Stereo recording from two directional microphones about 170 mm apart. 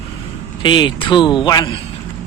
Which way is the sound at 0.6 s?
25° left (ahead or behind).